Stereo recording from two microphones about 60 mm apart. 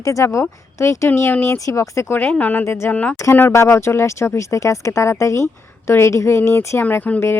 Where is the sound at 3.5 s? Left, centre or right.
Left.